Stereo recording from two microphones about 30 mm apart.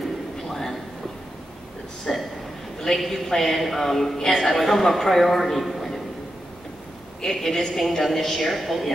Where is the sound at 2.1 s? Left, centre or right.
Centre.